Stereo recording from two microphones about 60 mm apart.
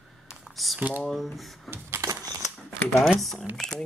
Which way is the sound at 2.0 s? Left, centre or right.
Right.